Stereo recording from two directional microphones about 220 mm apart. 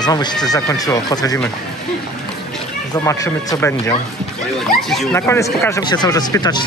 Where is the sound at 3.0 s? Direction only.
15° left (ahead or behind).